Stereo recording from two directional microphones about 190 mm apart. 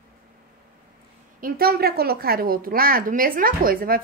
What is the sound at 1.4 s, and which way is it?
A woman's voice, 50° right (ahead or behind).